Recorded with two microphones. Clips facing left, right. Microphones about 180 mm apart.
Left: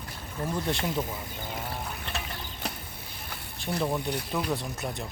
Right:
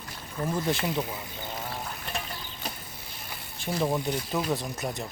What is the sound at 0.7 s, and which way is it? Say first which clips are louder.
Speech: right 1 dB; 5° right (ahead or behind).